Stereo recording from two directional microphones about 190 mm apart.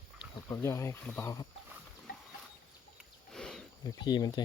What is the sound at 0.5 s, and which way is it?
Speech, 15° left (ahead or behind).